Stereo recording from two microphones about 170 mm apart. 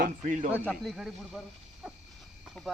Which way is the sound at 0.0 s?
50° right (ahead or behind).